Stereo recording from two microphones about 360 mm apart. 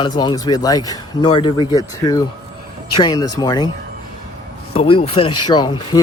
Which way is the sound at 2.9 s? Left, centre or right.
Centre.